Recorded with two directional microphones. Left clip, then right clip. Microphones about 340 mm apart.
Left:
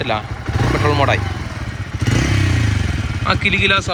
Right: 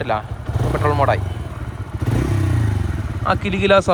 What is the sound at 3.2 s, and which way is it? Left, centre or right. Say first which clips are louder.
Speech: left 3 dB; centre.